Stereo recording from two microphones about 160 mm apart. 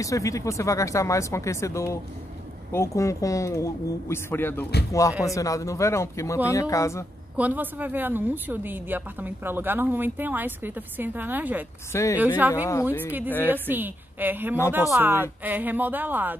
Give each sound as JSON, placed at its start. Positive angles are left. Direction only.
{"t": 0.0, "sound": "speech", "side_deg": 20}
{"t": 7.3, "sound": "a woman's voice", "side_deg": -10}
{"t": 11.9, "sound": "speech", "side_deg": 20}
{"t": 12.2, "sound": "a woman's voice", "side_deg": -10}